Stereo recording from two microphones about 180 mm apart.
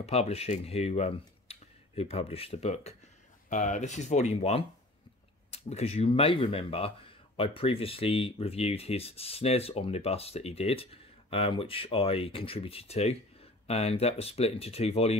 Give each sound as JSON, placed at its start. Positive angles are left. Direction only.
{"t": 0.0, "sound": "speech", "side_deg": 35}